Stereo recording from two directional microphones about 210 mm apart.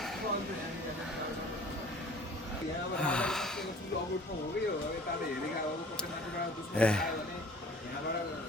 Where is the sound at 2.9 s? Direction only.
5° left (ahead or behind).